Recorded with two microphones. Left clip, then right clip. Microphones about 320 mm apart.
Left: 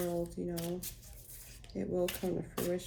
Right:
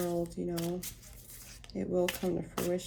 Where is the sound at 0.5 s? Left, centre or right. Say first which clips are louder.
Right 3 dB; right.